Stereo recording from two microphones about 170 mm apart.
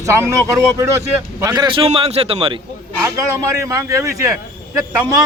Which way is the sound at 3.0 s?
15° right (ahead or behind).